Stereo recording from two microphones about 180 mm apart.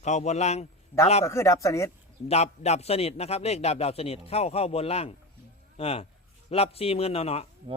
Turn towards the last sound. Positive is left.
turn(degrees=35)  # may be behind; listen again after turning